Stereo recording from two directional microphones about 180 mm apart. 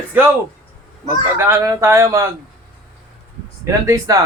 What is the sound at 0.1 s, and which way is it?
Speech, 10° right (ahead or behind).